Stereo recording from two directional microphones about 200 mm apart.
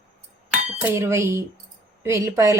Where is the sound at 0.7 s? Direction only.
10° right (ahead or behind).